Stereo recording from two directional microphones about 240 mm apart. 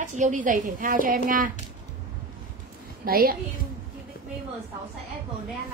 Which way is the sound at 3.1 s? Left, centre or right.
Right.